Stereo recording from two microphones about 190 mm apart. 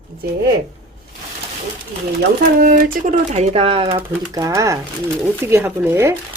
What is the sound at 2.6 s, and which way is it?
Speech, 45° right (ahead or behind).